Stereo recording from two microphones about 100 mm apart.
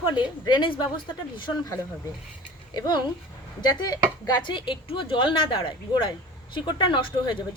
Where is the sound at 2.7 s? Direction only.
50° left (ahead or behind).